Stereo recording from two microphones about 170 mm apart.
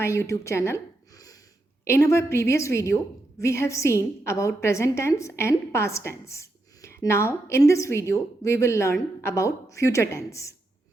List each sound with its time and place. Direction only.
0.0 s a woman's voice: 15° left (ahead or behind)
1.8 s a woman's voice: 15° left (ahead or behind)